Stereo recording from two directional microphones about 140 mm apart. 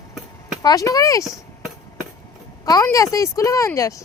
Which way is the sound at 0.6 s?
25° left (ahead or behind).